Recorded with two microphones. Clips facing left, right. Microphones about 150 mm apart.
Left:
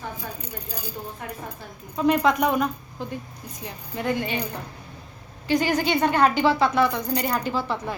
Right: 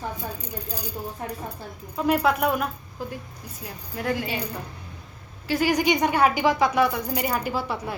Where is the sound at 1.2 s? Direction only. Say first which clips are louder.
Right 4 dB; 35° right (ahead or behind).